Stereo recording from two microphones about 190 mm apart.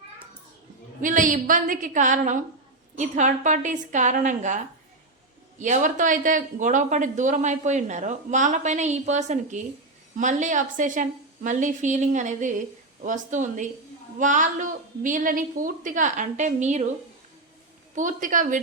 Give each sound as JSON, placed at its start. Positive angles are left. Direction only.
{"t": 1.0, "sound": "a woman's voice", "side_deg": -45}
{"t": 17.9, "sound": "a woman's voice", "side_deg": -40}